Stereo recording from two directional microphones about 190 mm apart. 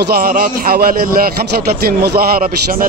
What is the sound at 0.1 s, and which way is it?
A man's voice, 50° right (ahead or behind).